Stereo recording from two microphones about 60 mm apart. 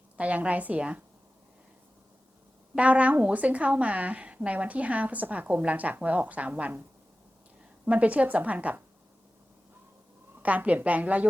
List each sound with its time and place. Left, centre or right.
0.2 s a woman's voice: right
2.7 s a woman's voice: right
7.9 s a woman's voice: right
10.4 s a woman's voice: right